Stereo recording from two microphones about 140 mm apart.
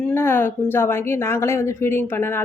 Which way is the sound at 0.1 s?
15° left (ahead or behind).